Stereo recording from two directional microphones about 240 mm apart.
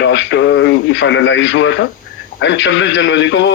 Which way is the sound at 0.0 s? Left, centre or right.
Left.